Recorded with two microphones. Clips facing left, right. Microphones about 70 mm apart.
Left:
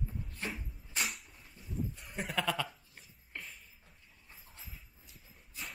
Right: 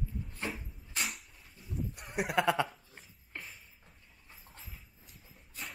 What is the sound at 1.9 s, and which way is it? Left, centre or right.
Sheep, right.